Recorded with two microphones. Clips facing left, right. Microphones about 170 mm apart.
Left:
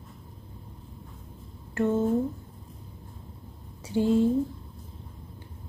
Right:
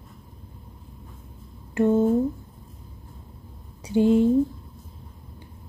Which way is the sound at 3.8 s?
20° right (ahead or behind).